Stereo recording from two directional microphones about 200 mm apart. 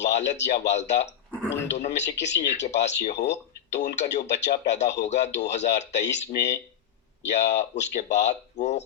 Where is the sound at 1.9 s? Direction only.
60° left (ahead or behind).